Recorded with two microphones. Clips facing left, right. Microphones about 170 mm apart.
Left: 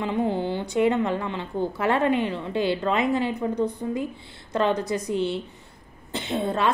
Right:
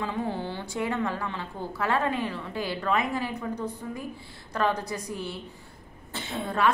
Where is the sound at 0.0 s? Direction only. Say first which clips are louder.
Left 6 dB; 20° left (ahead or behind).